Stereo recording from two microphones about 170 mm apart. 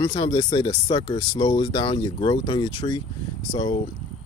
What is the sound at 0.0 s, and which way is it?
Speech, 25° left (ahead or behind).